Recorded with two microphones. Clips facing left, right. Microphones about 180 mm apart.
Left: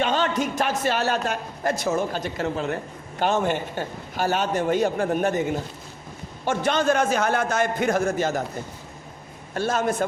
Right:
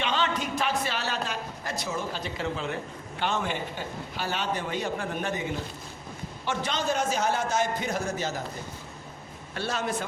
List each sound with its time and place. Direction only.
0.0 s a woman's voice: 45° left (ahead or behind)
6.4 s a woman's voice: 50° left (ahead or behind)
9.6 s a woman's voice: 50° left (ahead or behind)